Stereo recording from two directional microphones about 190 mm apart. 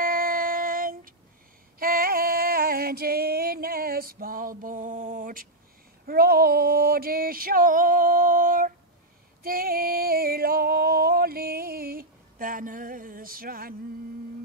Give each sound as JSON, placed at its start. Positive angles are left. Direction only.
{"t": 0.0, "sound": "female singing", "side_deg": -50}
{"t": 6.0, "sound": "a sound", "side_deg": -50}
{"t": 9.4, "sound": "female singing", "side_deg": -50}